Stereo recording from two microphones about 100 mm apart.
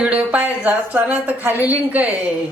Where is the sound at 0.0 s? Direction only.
15° right (ahead or behind).